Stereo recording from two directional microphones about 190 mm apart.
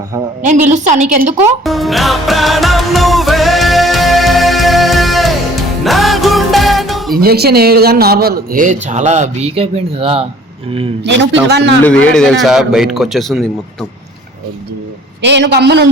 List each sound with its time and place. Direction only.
0.4 s a woman's voice: 40° right (ahead or behind)
1.4 s music: centre (ahead or behind)
7.1 s speech: 50° right (ahead or behind); by 10.2 s 30° right (ahead or behind)
11.0 s speech: 70° right (ahead or behind)
11.8 s a man's voice: 5° left (ahead or behind)
15.2 s a man's voice: 65° right (ahead or behind)